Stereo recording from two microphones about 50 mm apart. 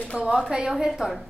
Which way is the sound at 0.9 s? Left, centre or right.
Centre.